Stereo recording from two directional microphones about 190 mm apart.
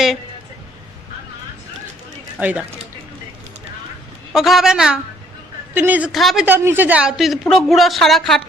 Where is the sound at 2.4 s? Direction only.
10° right (ahead or behind).